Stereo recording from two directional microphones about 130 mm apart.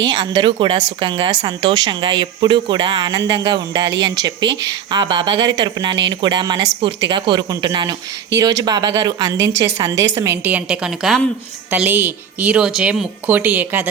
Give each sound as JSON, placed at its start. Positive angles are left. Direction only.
{"t": 0.0, "sound": "a woman's voice", "side_deg": -35}
{"t": 11.7, "sound": "a woman's voice", "side_deg": -15}